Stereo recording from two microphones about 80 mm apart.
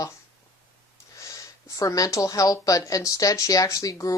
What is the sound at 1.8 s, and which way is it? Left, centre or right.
Speech, left.